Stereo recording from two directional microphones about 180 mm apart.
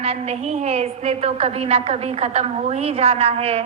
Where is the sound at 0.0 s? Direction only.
35° right (ahead or behind).